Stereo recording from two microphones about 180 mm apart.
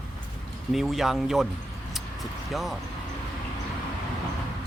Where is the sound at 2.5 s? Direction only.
Centre (ahead or behind).